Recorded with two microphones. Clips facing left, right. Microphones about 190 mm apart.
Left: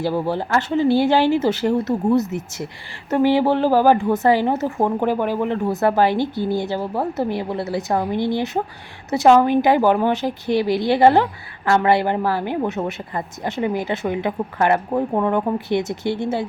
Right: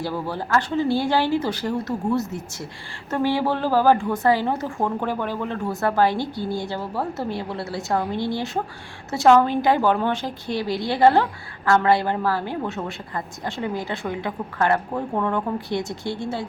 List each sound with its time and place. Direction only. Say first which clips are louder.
0.0 s a woman's voice: left 6 dB; 20° left (ahead or behind)